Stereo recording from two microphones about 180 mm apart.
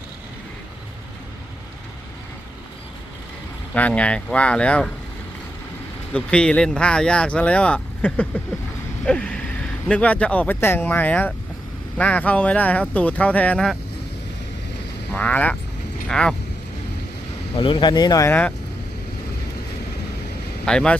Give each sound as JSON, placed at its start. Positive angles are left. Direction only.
{"t": 3.8, "sound": "speech", "side_deg": 5}
{"t": 6.1, "sound": "speech", "side_deg": 5}
{"t": 9.0, "sound": "vehicle", "side_deg": 5}
{"t": 9.9, "sound": "speech", "side_deg": 5}
{"t": 15.1, "sound": "speech", "side_deg": 10}
{"t": 17.5, "sound": "speech", "side_deg": 30}
{"t": 20.7, "sound": "speech", "side_deg": 5}